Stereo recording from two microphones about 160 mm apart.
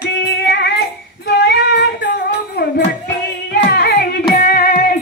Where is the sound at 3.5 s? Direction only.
85° left.